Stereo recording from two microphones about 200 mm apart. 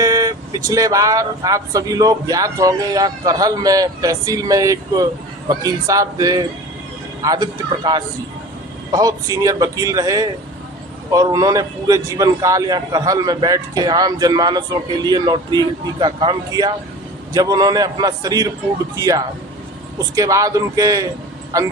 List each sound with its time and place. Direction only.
0.0 s a man's voice: 15° right (ahead or behind)